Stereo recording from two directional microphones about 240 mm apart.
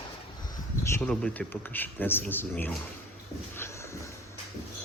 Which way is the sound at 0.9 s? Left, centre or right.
Centre.